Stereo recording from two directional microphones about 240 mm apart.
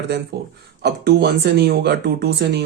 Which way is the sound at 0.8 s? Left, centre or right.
Right.